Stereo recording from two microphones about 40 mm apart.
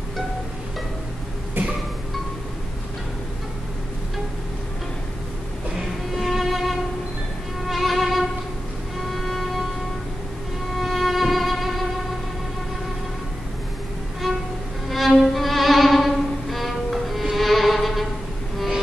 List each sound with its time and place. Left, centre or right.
1.6 s music: right
6.1 s music: centre
7.6 s violin: centre
9.1 s music: centre
10.7 s music: centre
14.9 s music: centre